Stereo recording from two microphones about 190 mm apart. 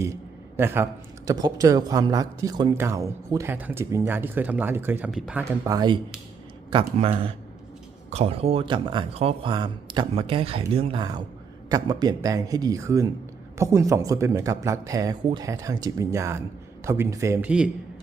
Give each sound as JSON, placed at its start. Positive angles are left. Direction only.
{"t": 0.0, "sound": "a sound", "side_deg": -15}
{"t": 1.3, "sound": "speech", "side_deg": -20}
{"t": 5.6, "sound": "speech", "side_deg": -20}